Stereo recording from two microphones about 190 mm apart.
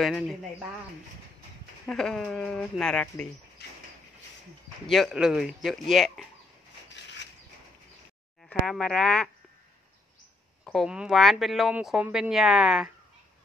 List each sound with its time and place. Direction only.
0.0 s speech: centre (ahead or behind)
1.9 s speech: 5° left (ahead or behind)
3.6 s a sound: 60° left (ahead or behind)
4.8 s speech: centre (ahead or behind)
6.9 s a sound: 70° left (ahead or behind)
8.5 s speech: 5° left (ahead or behind)
10.6 s speech: centre (ahead or behind)